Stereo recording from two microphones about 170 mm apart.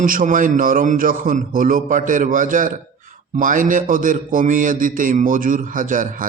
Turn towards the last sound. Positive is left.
turn(degrees=-50)  # may be behind; listen again after turning